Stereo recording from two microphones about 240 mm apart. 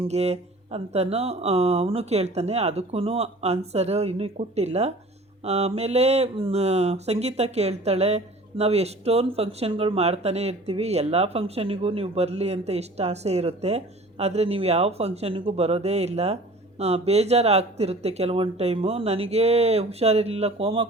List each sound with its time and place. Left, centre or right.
0.0 s speech: right